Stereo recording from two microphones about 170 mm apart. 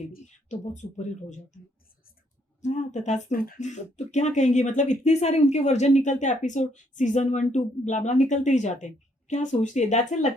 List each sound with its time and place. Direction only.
0.1 s speech: 45° left (ahead or behind)
2.6 s speech: 45° left (ahead or behind)